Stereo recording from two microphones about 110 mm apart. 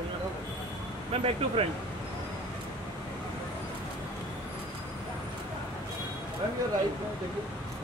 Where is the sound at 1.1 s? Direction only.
60° right (ahead or behind).